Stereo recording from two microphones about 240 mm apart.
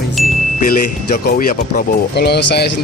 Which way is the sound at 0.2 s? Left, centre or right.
Centre.